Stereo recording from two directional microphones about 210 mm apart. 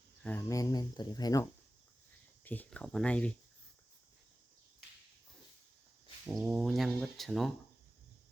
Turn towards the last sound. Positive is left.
turn(degrees=0)  # may be behind; listen again after turning